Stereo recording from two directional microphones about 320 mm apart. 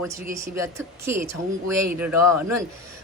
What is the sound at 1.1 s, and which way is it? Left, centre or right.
A man's voice, right.